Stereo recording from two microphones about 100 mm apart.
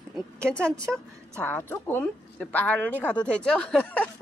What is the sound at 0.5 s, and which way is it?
Speech, 10° left (ahead or behind).